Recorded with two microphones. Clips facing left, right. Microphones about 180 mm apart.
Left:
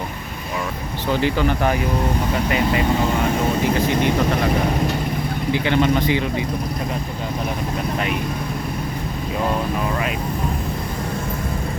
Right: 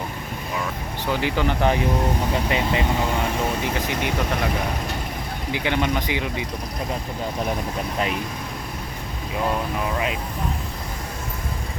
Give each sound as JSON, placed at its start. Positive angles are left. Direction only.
{"t": 1.2, "sound": "speech", "side_deg": -20}
{"t": 5.5, "sound": "speech", "side_deg": -15}